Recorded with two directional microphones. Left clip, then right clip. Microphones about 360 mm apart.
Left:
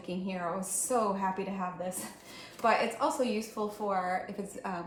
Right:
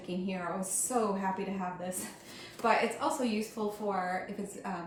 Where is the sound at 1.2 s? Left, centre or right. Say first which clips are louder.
Left 1 dB; centre.